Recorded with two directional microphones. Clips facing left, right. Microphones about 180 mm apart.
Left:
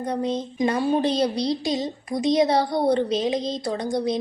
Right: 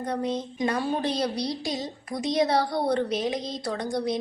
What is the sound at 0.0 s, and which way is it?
A woman's voice, 20° left (ahead or behind).